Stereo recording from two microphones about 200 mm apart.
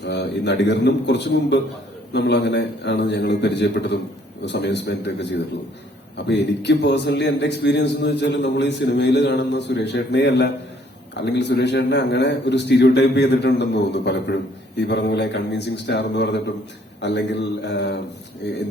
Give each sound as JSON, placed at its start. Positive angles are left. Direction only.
{"t": 0.0, "sound": "a man's voice", "side_deg": 60}